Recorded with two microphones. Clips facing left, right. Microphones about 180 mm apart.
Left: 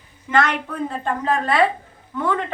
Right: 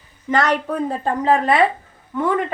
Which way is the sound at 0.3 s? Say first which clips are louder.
Right 2 dB; 35° right (ahead or behind).